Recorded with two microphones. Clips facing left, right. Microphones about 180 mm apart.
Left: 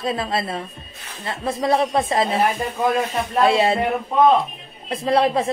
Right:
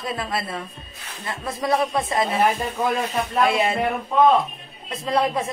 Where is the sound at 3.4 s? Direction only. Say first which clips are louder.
Left 5 dB; 30° left (ahead or behind).